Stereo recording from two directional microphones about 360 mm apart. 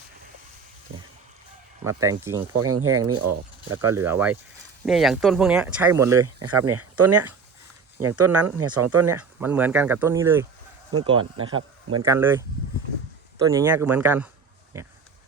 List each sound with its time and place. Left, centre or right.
1.8 s speech: centre
2.5 s speech: right
3.8 s speech: centre
6.4 s speech: right
9.1 s speech: centre